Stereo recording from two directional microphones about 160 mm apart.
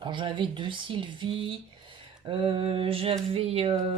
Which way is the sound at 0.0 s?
30° right (ahead or behind).